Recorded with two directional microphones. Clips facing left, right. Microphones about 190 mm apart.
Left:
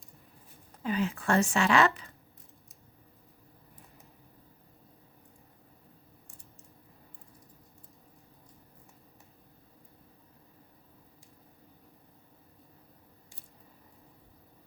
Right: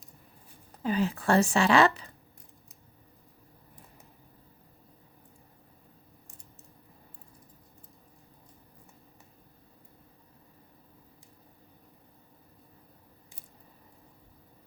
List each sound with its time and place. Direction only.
0.8 s speech: 35° right (ahead or behind)